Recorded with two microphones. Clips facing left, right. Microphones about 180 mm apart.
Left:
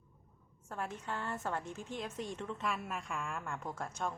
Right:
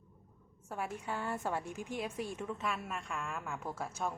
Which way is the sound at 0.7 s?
10° right (ahead or behind).